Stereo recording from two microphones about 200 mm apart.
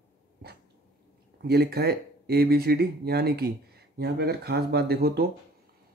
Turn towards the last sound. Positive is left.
turn(degrees=-50)  # may be behind; listen again after turning